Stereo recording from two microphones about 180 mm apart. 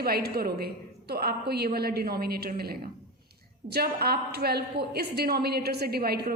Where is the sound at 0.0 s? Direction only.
60° right (ahead or behind).